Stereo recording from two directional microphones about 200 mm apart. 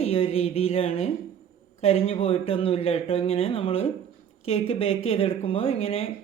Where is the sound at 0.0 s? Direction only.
30° left (ahead or behind).